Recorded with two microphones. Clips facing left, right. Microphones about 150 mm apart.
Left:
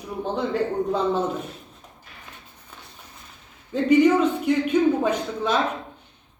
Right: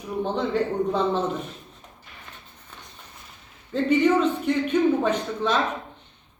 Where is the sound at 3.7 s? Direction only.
10° left (ahead or behind).